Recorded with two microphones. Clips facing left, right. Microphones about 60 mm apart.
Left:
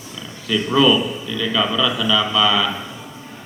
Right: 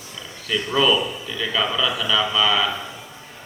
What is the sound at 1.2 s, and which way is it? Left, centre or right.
A man's voice, centre.